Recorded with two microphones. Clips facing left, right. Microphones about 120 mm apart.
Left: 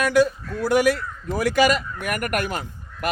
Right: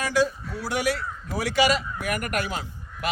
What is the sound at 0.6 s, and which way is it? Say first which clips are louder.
Speech: left 7 dB; 50° left (ahead or behind).